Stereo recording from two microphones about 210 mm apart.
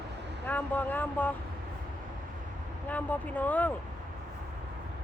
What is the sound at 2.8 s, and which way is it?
Speech, 5° left (ahead or behind).